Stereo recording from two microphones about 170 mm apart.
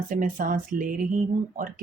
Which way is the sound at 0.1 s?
50° right (ahead or behind).